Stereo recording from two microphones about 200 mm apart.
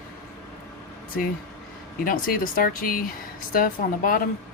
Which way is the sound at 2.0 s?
45° left (ahead or behind).